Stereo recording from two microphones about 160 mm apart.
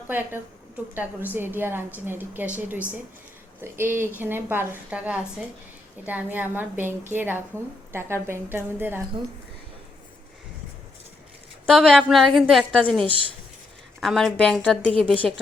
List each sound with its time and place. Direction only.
0.1 s a woman's voice: 10° right (ahead or behind)
11.6 s a woman's voice: 5° left (ahead or behind)